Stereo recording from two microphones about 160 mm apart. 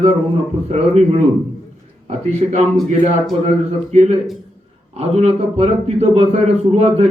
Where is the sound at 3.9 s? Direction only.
45° right (ahead or behind).